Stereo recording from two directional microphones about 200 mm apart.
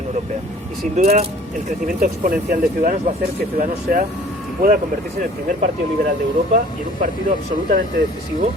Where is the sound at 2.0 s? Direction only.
45° right (ahead or behind).